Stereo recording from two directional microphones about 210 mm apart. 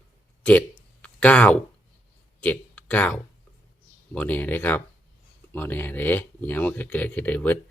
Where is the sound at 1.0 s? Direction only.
5° left (ahead or behind).